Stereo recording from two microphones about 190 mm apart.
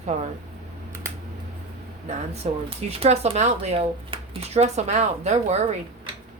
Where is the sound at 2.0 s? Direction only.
35° right (ahead or behind).